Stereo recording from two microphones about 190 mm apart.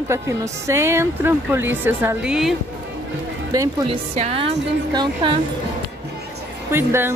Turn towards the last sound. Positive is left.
turn(degrees=-10)  # may be behind; listen again after turning